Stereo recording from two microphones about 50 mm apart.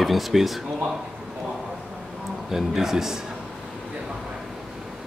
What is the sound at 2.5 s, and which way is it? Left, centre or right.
Speech, centre.